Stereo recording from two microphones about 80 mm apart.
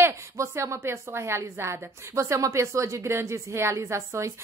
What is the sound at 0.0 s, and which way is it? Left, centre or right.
A woman's voice, right.